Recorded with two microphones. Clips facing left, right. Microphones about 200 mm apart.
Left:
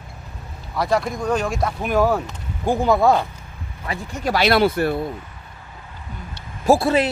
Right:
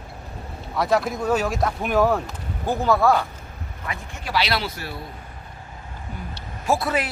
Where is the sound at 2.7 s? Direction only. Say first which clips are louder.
Left 3 dB; 15° left (ahead or behind).